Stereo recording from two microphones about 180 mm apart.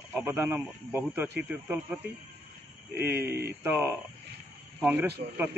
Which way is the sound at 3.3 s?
65° right (ahead or behind).